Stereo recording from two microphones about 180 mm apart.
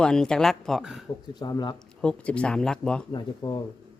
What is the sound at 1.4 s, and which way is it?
Speech, 20° left (ahead or behind).